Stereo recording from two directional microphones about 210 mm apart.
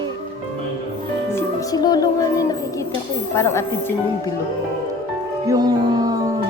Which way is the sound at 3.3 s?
10° left (ahead or behind).